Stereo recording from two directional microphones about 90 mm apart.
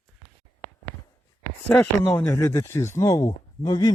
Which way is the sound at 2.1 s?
30° left (ahead or behind).